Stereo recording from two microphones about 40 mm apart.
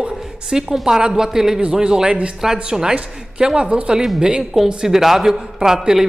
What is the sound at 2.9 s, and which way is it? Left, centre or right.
A woman's voice, right.